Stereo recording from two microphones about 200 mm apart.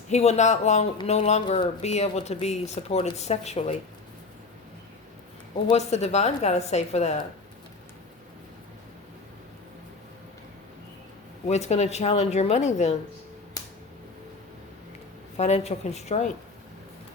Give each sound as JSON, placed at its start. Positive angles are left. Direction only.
{"t": 0.1, "sound": "speech", "side_deg": 35}
{"t": 5.7, "sound": "speech", "side_deg": 35}
{"t": 11.4, "sound": "speech", "side_deg": 35}
{"t": 15.4, "sound": "speech", "side_deg": 35}